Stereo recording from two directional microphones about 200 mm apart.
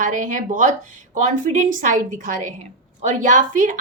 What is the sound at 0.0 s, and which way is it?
A woman's voice, 40° right (ahead or behind).